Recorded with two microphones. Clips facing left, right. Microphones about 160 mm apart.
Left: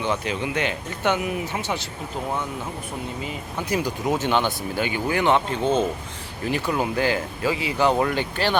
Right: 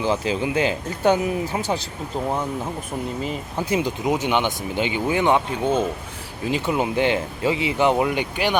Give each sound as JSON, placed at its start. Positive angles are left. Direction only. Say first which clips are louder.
{"t": 0.0, "sound": "speech", "louder": "right 3 dB", "side_deg": -30}
{"t": 3.7, "sound": "speech", "louder": "right 2 dB", "side_deg": -20}